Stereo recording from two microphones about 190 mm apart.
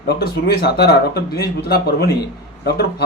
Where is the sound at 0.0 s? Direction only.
55° left (ahead or behind).